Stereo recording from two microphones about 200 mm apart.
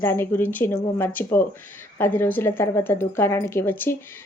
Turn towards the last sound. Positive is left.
turn(degrees=10)  # may be behind; listen again after turning